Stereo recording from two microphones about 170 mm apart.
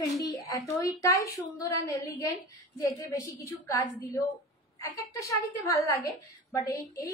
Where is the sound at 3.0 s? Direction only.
20° left (ahead or behind).